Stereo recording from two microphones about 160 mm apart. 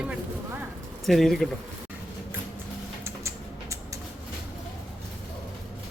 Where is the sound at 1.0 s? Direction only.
Centre (ahead or behind).